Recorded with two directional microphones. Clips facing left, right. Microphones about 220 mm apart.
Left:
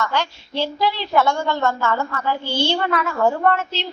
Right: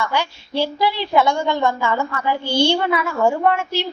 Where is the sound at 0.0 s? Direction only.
10° right (ahead or behind).